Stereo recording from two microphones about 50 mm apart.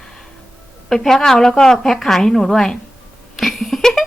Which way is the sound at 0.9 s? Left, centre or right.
Centre.